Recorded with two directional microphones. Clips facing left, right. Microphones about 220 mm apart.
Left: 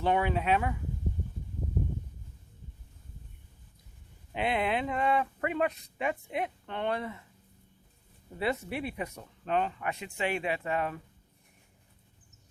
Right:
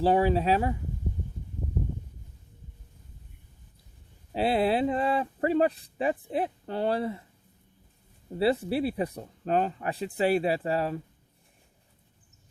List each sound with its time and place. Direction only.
0.0 s speech: 35° right (ahead or behind)
4.3 s speech: 35° right (ahead or behind)
8.4 s speech: 30° right (ahead or behind)